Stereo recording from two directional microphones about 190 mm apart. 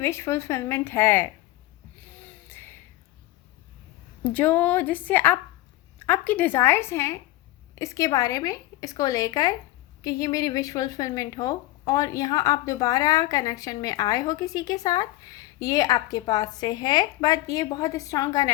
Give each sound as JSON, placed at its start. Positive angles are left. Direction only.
{"t": 0.0, "sound": "speech", "side_deg": 15}
{"t": 2.0, "sound": "a sound", "side_deg": 10}
{"t": 4.2, "sound": "speech", "side_deg": 10}